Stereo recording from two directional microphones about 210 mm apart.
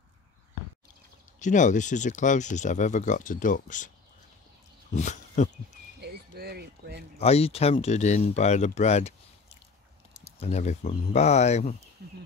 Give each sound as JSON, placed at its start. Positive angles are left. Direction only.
{"t": 1.4, "sound": "speech", "side_deg": 35}
{"t": 4.9, "sound": "speech", "side_deg": 35}
{"t": 5.9, "sound": "a sound", "side_deg": -50}
{"t": 7.2, "sound": "speech", "side_deg": 30}
{"t": 10.4, "sound": "speech", "side_deg": 30}
{"t": 12.0, "sound": "speech", "side_deg": -50}